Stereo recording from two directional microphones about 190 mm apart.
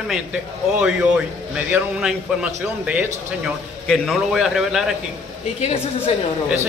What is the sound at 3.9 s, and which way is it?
Speech, centre (ahead or behind).